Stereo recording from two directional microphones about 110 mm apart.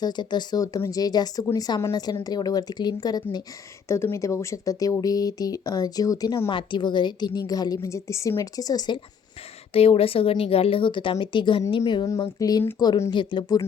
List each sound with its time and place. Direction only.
0.0 s speech: 40° left (ahead or behind)
3.8 s speech: 25° left (ahead or behind)
6.5 s speech: 45° left (ahead or behind)
9.7 s speech: 60° left (ahead or behind); by 11.6 s 45° left (ahead or behind)
12.4 s speech: 35° left (ahead or behind)